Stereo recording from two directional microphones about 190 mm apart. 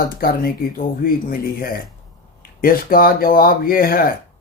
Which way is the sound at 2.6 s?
50° left (ahead or behind).